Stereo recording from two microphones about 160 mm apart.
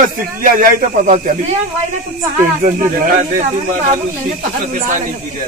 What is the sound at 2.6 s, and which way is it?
Speech, 55° right (ahead or behind).